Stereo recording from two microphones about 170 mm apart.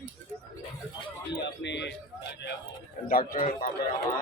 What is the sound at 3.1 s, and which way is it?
Speech, 55° left (ahead or behind).